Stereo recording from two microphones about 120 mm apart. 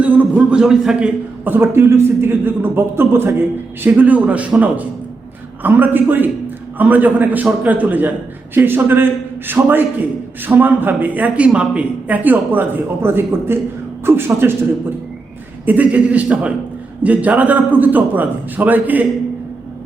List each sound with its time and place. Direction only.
0.0 s a man's voice: 10° right (ahead or behind)